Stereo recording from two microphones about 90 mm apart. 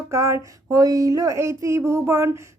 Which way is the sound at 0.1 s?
30° right (ahead or behind).